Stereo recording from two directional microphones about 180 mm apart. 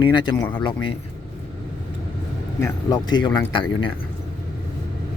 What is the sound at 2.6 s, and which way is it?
Speech, 20° left (ahead or behind).